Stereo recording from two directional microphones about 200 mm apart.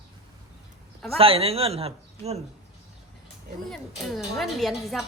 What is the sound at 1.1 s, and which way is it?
A man's voice, 30° right (ahead or behind).